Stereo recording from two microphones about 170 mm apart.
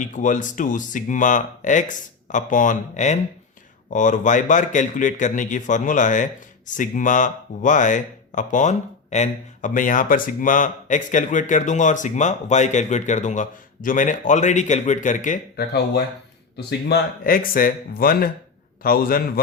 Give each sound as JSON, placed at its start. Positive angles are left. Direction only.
{"t": 0.0, "sound": "speech", "side_deg": 50}
{"t": 16.6, "sound": "speech", "side_deg": 70}